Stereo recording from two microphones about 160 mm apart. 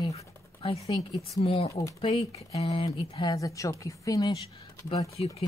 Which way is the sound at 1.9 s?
40° left (ahead or behind).